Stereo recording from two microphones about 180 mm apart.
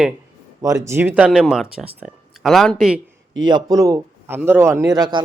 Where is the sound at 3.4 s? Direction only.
25° right (ahead or behind).